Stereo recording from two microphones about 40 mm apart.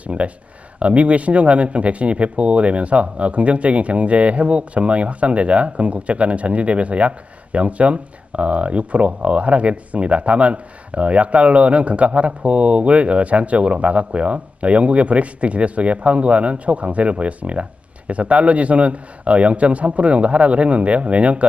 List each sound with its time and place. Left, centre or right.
0.1 s speech: right